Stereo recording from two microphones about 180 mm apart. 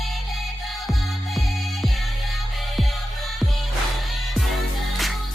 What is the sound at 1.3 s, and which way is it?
Music, centre (ahead or behind).